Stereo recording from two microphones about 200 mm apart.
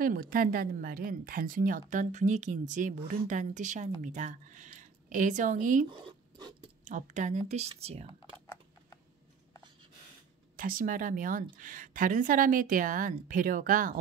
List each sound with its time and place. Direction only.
0.0 s speech: 45° right (ahead or behind)
6.0 s a sound: 20° right (ahead or behind)
6.8 s speech: 40° right (ahead or behind)
10.5 s a woman's voice: 45° right (ahead or behind)